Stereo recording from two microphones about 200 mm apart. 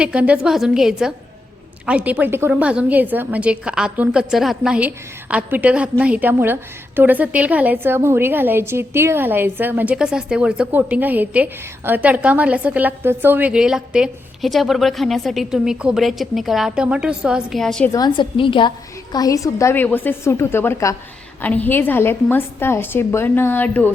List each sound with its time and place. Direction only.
0.0 s a woman's voice: 5° right (ahead or behind)
17.9 s a woman's voice: 20° left (ahead or behind)